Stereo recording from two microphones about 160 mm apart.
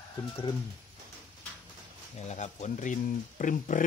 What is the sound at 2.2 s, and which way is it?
Speech, 45° left (ahead or behind).